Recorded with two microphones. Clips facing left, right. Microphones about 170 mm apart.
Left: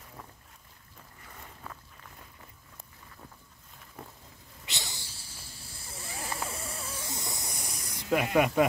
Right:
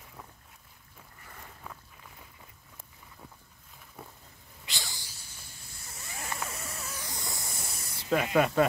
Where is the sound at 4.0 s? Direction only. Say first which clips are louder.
Left 1 dB; 5° right (ahead or behind).